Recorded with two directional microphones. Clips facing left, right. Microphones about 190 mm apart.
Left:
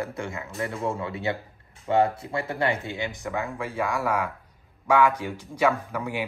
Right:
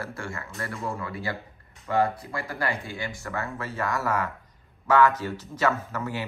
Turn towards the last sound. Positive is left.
turn(degrees=10)  # may be behind; listen again after turning